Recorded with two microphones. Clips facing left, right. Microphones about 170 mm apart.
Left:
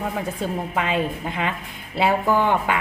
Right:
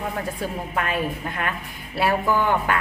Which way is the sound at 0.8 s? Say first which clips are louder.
Left 1 dB; 20° left (ahead or behind).